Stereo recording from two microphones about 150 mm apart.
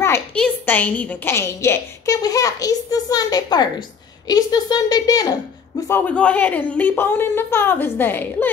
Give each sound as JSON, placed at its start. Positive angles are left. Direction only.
{"t": 0.0, "sound": "a sound", "side_deg": 15}
{"t": 0.4, "sound": "a woman's voice", "side_deg": 10}
{"t": 5.9, "sound": "a woman's voice", "side_deg": 10}